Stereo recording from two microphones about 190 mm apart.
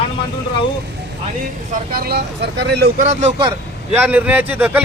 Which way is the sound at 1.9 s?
55° right (ahead or behind).